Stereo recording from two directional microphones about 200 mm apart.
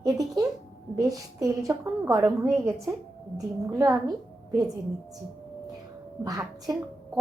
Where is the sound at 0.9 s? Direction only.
15° right (ahead or behind).